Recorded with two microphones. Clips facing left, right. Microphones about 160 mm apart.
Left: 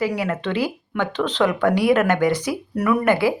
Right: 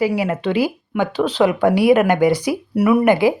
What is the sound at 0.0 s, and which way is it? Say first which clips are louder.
Speech: right 4 dB; 10° right (ahead or behind).